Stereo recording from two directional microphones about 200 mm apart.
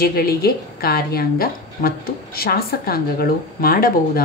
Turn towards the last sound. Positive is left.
turn(degrees=45)  # may be behind; listen again after turning